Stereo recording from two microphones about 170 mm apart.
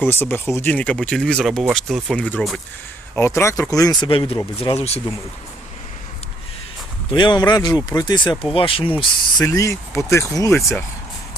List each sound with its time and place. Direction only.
0.0 s speech: 10° left (ahead or behind)
3.2 s speech: 15° left (ahead or behind); by 4.9 s 35° left (ahead or behind)
7.1 s speech: 25° left (ahead or behind)
9.4 s speech: 20° left (ahead or behind)